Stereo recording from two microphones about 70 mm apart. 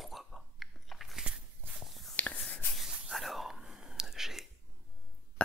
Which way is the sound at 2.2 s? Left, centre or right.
Left.